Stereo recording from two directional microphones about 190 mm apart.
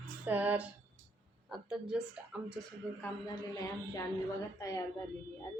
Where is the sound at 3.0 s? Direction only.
20° left (ahead or behind).